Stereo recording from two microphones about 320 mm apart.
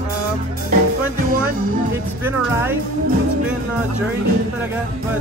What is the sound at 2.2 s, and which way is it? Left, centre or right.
Speech, centre.